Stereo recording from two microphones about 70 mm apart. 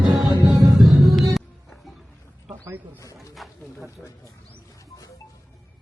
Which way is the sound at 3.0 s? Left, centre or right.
Left.